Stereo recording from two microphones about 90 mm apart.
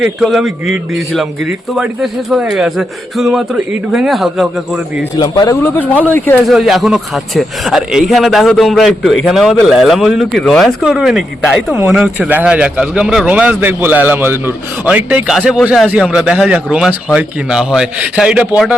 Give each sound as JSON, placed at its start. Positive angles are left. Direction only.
{"t": 0.0, "sound": "a man's voice", "side_deg": 0}
{"t": 5.6, "sound": "speech", "side_deg": 20}
{"t": 6.5, "sound": "a man's voice", "side_deg": 0}
{"t": 12.3, "sound": "a man's voice", "side_deg": -15}
{"t": 14.8, "sound": "a man's voice", "side_deg": -15}